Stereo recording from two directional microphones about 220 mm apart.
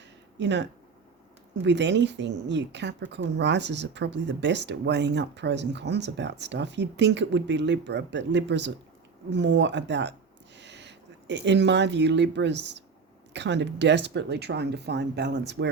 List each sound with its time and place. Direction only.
0.3 s speech: 50° right (ahead or behind)